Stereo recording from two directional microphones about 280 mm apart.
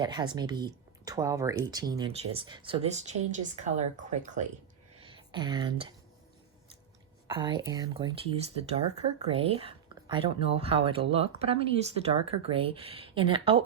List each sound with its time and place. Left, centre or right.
0.0 s speech: centre
4.9 s a sound: centre
7.3 s speech: centre